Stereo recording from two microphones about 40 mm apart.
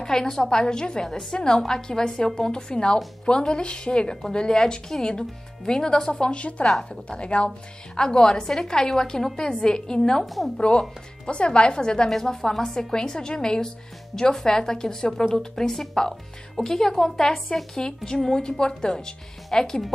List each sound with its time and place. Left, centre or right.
0.0 s a woman's voice: centre
10.2 s a woman's voice: centre
10.6 s a woman's voice: left
12.1 s a woman's voice: centre
12.9 s a woman's voice: centre